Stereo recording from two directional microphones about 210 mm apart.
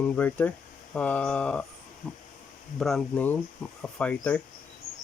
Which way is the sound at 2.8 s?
Centre (ahead or behind).